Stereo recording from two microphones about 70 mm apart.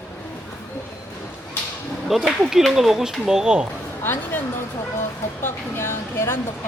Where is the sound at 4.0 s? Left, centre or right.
Left.